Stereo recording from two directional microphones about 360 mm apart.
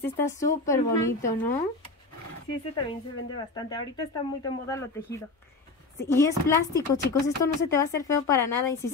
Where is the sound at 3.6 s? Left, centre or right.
Centre.